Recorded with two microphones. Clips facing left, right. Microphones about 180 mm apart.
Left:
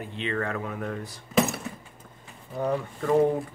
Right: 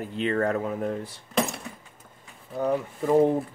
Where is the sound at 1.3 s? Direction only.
5° left (ahead or behind).